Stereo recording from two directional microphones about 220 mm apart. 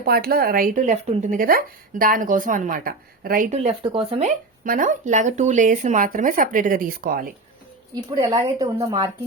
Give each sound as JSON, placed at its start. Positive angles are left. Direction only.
{"t": 0.0, "sound": "speech", "side_deg": -45}
{"t": 4.6, "sound": "speech", "side_deg": -40}
{"t": 8.2, "sound": "speech", "side_deg": -15}